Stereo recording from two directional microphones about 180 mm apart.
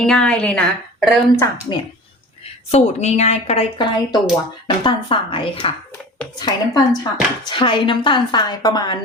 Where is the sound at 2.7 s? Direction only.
40° left (ahead or behind).